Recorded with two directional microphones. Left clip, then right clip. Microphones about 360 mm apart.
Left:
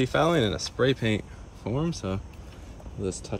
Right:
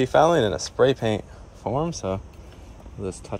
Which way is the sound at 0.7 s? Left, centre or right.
Centre.